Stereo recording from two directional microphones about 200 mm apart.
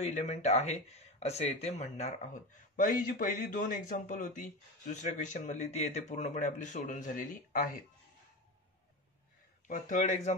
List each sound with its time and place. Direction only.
0.0 s speech: 35° left (ahead or behind)
9.7 s speech: 40° left (ahead or behind)